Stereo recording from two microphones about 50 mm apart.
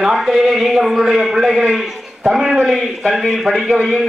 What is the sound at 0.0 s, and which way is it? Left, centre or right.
A man's voice, centre.